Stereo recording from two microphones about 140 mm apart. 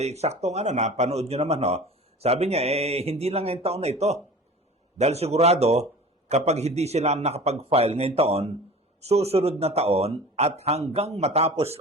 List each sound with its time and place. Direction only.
0.0 s a man's voice: 50° right (ahead or behind)